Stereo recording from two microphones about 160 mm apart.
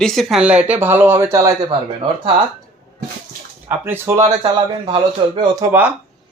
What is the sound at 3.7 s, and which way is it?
Speech, 15° right (ahead or behind).